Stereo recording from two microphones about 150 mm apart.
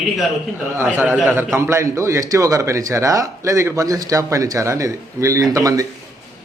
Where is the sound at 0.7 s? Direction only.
15° right (ahead or behind).